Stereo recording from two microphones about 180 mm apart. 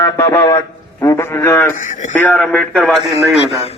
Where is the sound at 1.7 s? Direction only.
45° left (ahead or behind).